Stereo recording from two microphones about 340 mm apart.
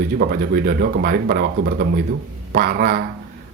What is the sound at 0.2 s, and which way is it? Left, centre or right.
A man's voice, right.